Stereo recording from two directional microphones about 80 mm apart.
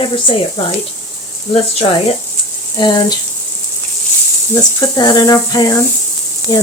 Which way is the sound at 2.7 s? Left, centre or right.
Left.